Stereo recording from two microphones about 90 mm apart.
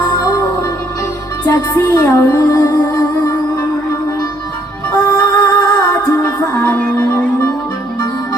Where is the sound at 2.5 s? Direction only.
45° left (ahead or behind).